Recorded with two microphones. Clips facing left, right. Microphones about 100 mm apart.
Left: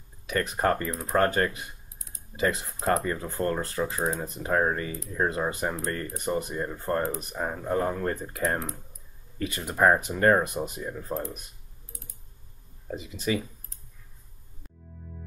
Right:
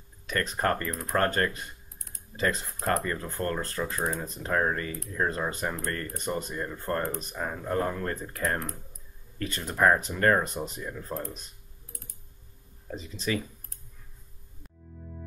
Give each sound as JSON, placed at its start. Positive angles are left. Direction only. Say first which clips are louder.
{"t": 0.3, "sound": "speech", "louder": "left 2 dB", "side_deg": 15}
{"t": 2.0, "sound": "typing", "louder": "even", "side_deg": -55}
{"t": 2.3, "sound": "speech", "louder": "left 2 dB", "side_deg": 15}
{"t": 12.9, "sound": "speech", "louder": "left 2 dB", "side_deg": 15}